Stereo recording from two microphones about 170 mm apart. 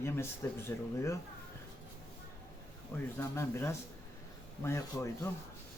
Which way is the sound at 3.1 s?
15° left (ahead or behind).